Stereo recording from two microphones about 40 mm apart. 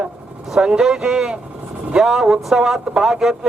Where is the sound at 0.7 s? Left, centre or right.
Centre.